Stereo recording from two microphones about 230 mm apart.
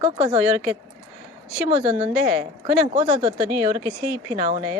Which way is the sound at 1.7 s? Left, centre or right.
Right.